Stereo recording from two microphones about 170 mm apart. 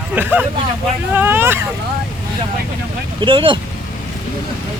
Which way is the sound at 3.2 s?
30° right (ahead or behind).